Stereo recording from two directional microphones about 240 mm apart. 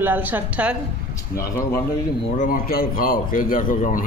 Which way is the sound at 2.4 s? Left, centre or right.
Left.